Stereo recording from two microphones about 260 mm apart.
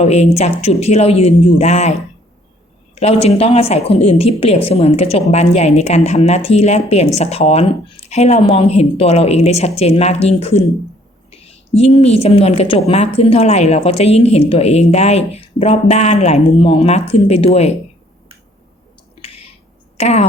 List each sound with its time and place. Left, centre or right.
0.0 s a woman's voice: left
19.2 s a sound: left
20.0 s speech: left